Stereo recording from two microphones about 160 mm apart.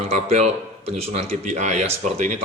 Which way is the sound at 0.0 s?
40° right (ahead or behind).